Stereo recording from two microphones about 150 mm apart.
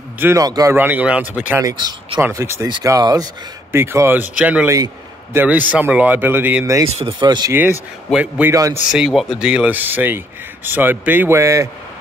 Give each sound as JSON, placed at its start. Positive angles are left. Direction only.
{"t": 0.2, "sound": "a man's voice", "side_deg": -20}
{"t": 0.7, "sound": "speech", "side_deg": -10}
{"t": 1.6, "sound": "a man's voice", "side_deg": -25}
{"t": 4.6, "sound": "a man's voice", "side_deg": -20}
{"t": 6.9, "sound": "speech", "side_deg": -45}
{"t": 7.2, "sound": "a man's voice", "side_deg": -30}
{"t": 8.1, "sound": "speech", "side_deg": -10}